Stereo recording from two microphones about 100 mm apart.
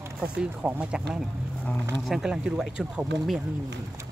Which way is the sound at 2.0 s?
5° right (ahead or behind).